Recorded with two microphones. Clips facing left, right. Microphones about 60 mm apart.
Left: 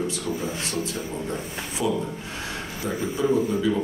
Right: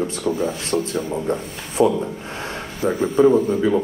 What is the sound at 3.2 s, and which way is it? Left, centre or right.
Speech, right.